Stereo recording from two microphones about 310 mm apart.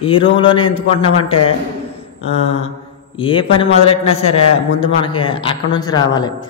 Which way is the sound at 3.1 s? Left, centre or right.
Centre.